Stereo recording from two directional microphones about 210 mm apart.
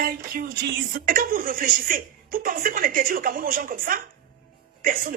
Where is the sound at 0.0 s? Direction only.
45° right (ahead or behind).